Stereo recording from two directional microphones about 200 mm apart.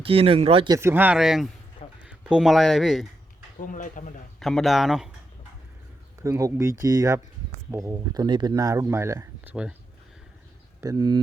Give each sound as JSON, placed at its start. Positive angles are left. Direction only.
{"t": 0.0, "sound": "speech", "side_deg": -30}
{"t": 0.8, "sound": "speech", "side_deg": -10}
{"t": 3.6, "sound": "speech", "side_deg": 40}
{"t": 4.4, "sound": "speech", "side_deg": 0}
{"t": 6.2, "sound": "speech", "side_deg": -15}
{"t": 10.8, "sound": "speech", "side_deg": -15}